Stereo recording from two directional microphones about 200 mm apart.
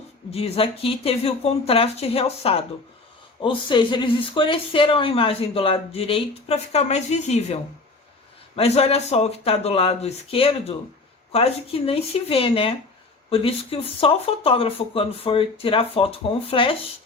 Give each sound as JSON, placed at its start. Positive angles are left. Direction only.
{"t": 0.3, "sound": "speech", "side_deg": 30}